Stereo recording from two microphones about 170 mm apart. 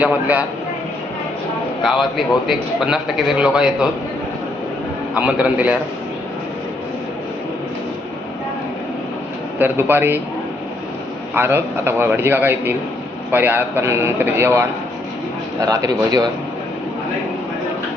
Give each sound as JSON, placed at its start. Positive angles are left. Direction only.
{"t": 0.0, "sound": "a man's voice", "side_deg": -10}
{"t": 1.8, "sound": "a man's voice", "side_deg": 0}
{"t": 5.1, "sound": "a man's voice", "side_deg": -5}
{"t": 9.6, "sound": "a man's voice", "side_deg": -10}
{"t": 11.3, "sound": "a man's voice", "side_deg": -15}